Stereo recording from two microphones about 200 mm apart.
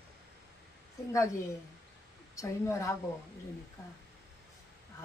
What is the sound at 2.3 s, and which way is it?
Speech, 15° left (ahead or behind).